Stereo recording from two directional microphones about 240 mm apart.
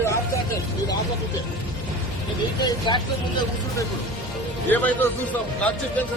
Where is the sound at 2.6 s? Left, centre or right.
Centre.